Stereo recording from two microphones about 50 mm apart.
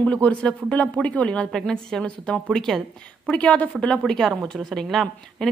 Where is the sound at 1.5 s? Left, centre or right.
Centre.